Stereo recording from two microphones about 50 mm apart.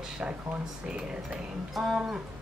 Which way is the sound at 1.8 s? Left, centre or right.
Centre.